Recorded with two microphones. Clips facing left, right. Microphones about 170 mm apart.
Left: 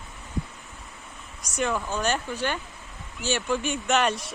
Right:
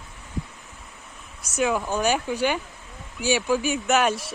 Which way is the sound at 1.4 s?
5° right (ahead or behind).